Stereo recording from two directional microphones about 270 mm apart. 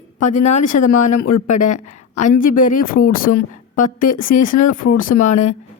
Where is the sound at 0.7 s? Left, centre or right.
Left.